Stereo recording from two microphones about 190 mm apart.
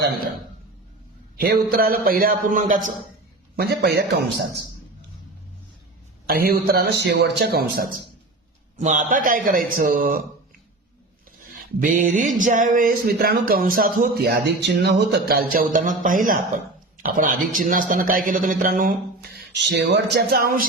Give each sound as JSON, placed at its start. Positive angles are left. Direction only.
{"t": 1.4, "sound": "speech", "side_deg": -50}
{"t": 3.5, "sound": "a man's voice", "side_deg": -55}
{"t": 6.2, "sound": "a man's voice", "side_deg": -50}
{"t": 8.8, "sound": "speech", "side_deg": -40}
{"t": 11.5, "sound": "speech", "side_deg": -45}
{"t": 19.5, "sound": "a man's voice", "side_deg": -65}